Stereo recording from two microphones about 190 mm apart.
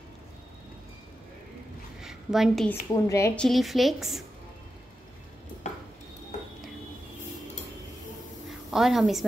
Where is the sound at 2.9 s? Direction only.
15° left (ahead or behind).